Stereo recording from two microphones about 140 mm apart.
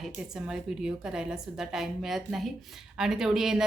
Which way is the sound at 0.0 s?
5° right (ahead or behind).